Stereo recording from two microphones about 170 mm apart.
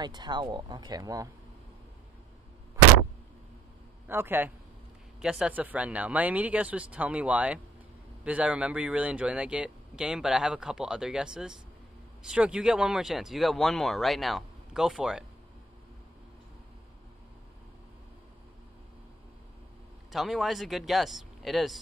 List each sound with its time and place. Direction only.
0.0 s speech: 25° right (ahead or behind)
4.1 s speech: 15° right (ahead or behind)
20.1 s speech: centre (ahead or behind)